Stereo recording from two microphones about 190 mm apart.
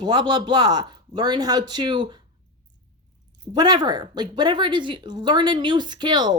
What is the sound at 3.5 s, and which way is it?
Speech, 20° right (ahead or behind).